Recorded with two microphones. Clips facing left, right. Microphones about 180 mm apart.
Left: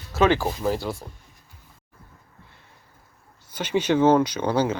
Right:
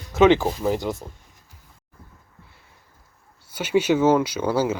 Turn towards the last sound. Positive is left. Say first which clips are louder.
# right 1 dB
turn(degrees=-5)  # may be behind; listen again after turning